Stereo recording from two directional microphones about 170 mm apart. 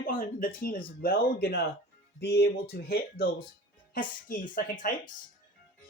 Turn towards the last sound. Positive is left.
turn(degrees=50)  # may be behind; listen again after turning